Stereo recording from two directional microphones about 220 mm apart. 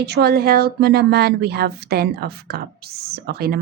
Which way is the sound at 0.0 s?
45° right (ahead or behind).